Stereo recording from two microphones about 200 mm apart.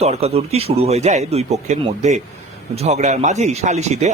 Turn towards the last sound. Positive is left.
turn(degrees=-35)  # may be behind; listen again after turning